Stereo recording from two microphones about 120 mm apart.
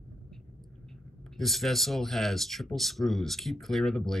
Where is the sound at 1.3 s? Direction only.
Centre (ahead or behind).